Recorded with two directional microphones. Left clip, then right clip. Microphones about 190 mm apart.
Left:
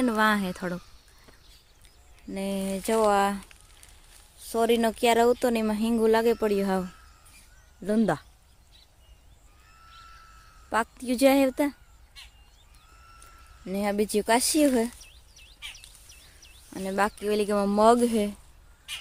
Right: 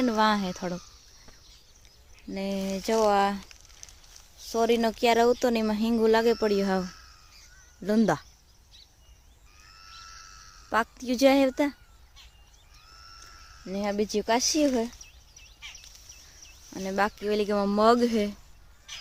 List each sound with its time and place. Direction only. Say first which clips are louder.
0.0 s speech: even; 5° left (ahead or behind)
2.3 s speech: even; centre (ahead or behind)
9.8 s a sound: right 3 dB; 45° right (ahead or behind)
10.7 s speech: even; centre (ahead or behind)
13.7 s speech: left 2 dB; 10° left (ahead or behind)
16.6 s speech: left 1 dB; 5° left (ahead or behind)